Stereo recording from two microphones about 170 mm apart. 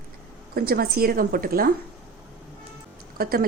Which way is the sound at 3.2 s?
60° right (ahead or behind).